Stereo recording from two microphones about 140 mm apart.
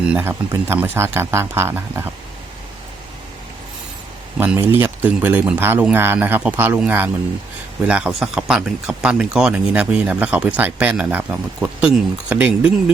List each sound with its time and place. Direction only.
0.1 s speech: 15° right (ahead or behind)
4.4 s speech: 15° right (ahead or behind)